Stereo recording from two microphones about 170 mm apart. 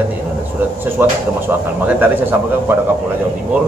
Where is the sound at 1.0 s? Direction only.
15° right (ahead or behind).